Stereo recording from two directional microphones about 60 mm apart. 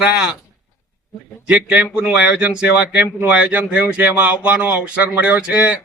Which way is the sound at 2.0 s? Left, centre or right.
Centre.